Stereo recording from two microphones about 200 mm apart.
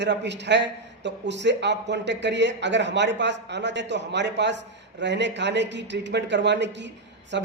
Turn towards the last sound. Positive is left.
turn(degrees=-60)  # may be behind; listen again after turning